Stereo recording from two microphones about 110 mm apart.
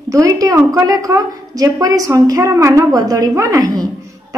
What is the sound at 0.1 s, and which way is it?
A woman's voice, 30° right (ahead or behind).